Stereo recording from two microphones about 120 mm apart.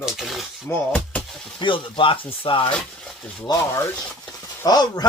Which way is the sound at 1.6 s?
45° left (ahead or behind).